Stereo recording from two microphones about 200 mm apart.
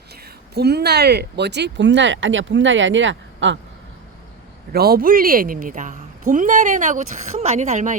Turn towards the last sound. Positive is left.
turn(degrees=-35)  # may be behind; listen again after turning